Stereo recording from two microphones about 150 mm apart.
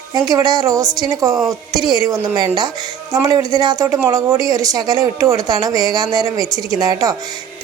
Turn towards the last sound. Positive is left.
turn(degrees=-25)  # may be behind; listen again after turning